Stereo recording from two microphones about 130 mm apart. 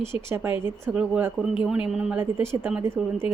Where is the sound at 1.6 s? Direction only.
5° right (ahead or behind).